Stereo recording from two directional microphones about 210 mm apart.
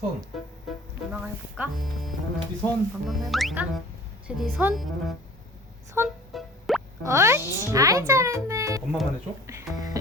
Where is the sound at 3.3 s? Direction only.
Centre (ahead or behind).